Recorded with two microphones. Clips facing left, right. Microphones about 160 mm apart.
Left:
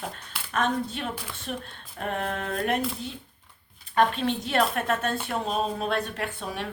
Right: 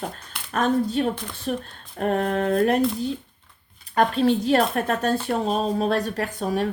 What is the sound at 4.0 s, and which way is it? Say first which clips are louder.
A woman's voice: right 4 dB; 35° right (ahead or behind).